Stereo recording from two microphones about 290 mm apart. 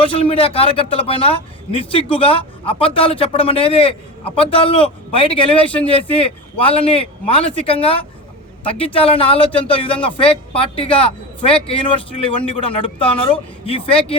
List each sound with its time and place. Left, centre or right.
0.0 s a man's voice: centre